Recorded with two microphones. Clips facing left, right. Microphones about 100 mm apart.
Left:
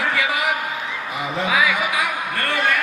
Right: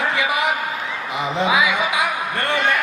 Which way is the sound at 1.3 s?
20° right (ahead or behind).